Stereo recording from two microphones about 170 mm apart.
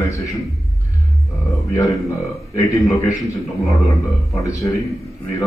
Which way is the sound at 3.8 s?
20° left (ahead or behind).